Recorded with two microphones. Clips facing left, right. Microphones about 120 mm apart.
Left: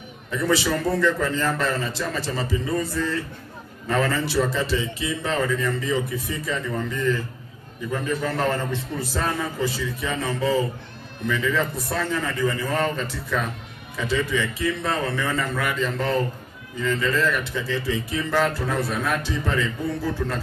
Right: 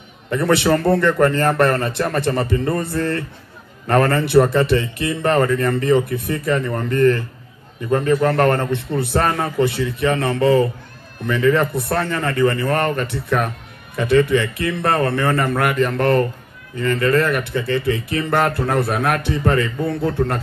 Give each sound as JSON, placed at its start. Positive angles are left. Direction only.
{"t": 0.3, "sound": "speech", "side_deg": -60}